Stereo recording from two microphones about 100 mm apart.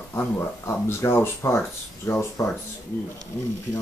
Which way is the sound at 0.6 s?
25° left (ahead or behind).